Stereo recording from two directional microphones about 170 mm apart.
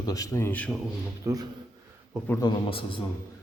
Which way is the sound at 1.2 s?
20° right (ahead or behind).